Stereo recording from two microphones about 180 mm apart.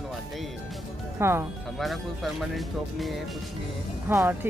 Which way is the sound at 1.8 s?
Centre (ahead or behind).